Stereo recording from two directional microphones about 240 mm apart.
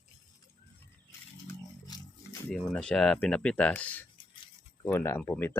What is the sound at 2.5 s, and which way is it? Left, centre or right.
Speech, centre.